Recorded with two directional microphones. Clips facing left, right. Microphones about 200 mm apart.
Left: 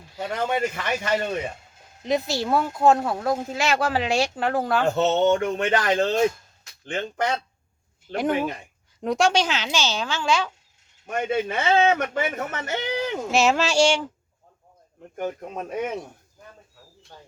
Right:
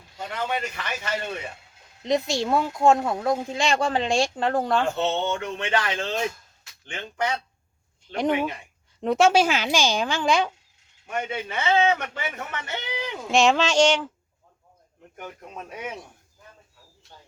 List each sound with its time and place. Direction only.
0.3 s a man's voice: 45° left (ahead or behind)
2.0 s speech: 5° left (ahead or behind)
4.9 s speech: 40° left (ahead or behind)
8.0 s speech: 5° left (ahead or behind); by 10.5 s 15° right (ahead or behind)
11.0 s a man's voice: 45° left (ahead or behind)
13.3 s speech: 5° left (ahead or behind)
15.1 s a man's voice: 45° left (ahead or behind)